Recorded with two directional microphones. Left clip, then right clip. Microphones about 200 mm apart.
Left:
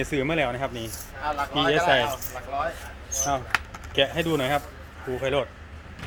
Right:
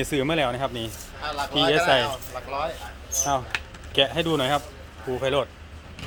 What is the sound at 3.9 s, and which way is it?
A man's voice, 15° right (ahead or behind).